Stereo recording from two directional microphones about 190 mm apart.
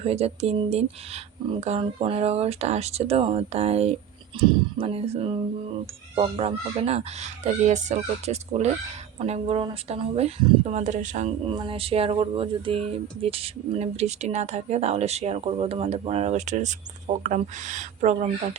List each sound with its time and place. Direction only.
0.0 s speech: 30° right (ahead or behind)